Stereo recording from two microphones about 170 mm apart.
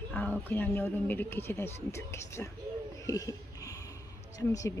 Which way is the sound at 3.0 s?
20° left (ahead or behind).